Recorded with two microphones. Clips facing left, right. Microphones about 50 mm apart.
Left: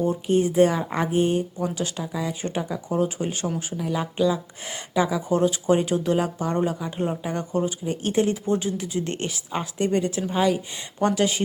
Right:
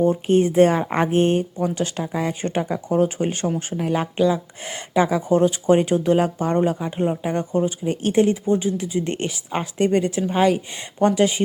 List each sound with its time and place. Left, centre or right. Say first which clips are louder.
0.0 s a woman's voice: right 4 dB; right
6.9 s a woman's voice: right 4 dB; centre
8.2 s a woman's voice: right 4 dB; centre; by 10.8 s right
11.0 s a woman's voice: right 4 dB; right